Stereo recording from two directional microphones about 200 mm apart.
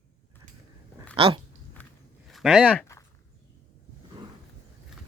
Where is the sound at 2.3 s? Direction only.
Centre (ahead or behind).